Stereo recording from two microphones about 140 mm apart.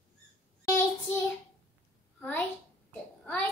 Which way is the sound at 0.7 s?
20° left (ahead or behind).